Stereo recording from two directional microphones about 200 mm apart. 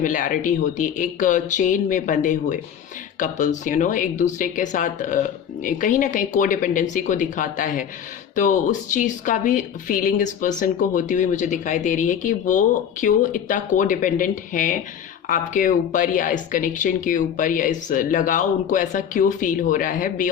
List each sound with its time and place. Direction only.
0.0 s speech: 40° left (ahead or behind)